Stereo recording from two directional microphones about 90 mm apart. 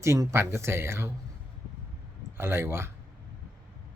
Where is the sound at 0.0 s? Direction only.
35° right (ahead or behind).